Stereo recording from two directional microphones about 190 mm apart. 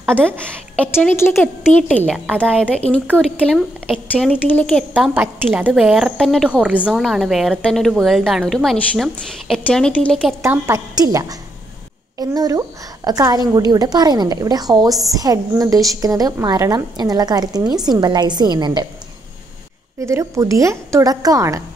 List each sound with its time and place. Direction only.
1.0 s a woman's voice: 10° left (ahead or behind)
2.2 s a woman's voice: 10° right (ahead or behind)
2.5 s a woman's voice: 5° left (ahead or behind)
4.9 s a woman's voice: 10° right (ahead or behind)
10.4 s a woman's voice: 15° right (ahead or behind)
20.0 s a woman's voice: 15° right (ahead or behind)